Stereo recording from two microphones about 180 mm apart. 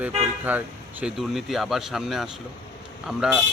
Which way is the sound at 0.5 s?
10° right (ahead or behind).